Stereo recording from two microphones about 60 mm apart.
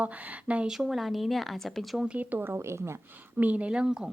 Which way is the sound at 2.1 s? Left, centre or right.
Right.